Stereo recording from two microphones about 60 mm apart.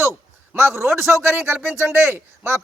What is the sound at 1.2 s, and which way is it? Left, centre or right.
Speech, right.